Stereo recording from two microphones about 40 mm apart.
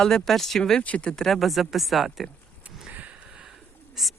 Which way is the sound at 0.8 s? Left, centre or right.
Left.